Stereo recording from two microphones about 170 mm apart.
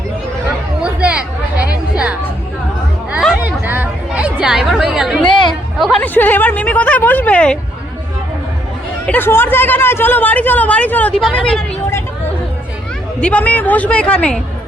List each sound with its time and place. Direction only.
0.8 s chatter: 5° right (ahead or behind)
5.2 s chatter: 25° left (ahead or behind)
5.8 s speech: 10° left (ahead or behind)
9.0 s speech: 10° left (ahead or behind)
13.2 s speech: 10° left (ahead or behind)